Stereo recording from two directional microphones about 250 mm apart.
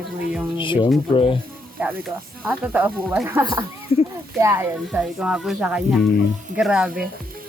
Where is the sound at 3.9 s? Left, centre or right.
Left.